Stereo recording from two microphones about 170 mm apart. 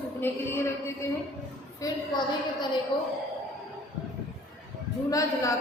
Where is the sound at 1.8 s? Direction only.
25° left (ahead or behind).